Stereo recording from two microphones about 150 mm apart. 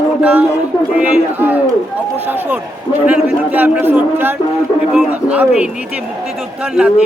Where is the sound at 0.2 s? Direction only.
10° right (ahead or behind).